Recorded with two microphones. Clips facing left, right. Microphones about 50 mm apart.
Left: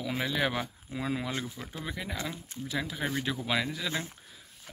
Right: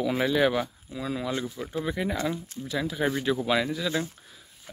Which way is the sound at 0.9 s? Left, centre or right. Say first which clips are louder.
Right 1 dB; left.